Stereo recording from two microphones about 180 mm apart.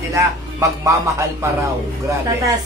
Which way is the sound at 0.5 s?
15° right (ahead or behind).